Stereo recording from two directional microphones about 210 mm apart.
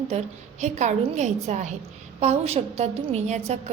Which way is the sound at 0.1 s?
30° right (ahead or behind).